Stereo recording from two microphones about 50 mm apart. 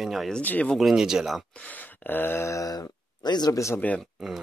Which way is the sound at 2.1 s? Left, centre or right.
Left.